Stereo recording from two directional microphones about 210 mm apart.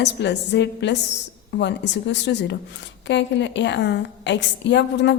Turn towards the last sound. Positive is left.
turn(degrees=60)  # may be behind; listen again after turning